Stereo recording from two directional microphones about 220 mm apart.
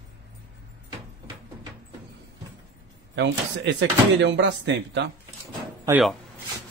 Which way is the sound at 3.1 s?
55° right (ahead or behind).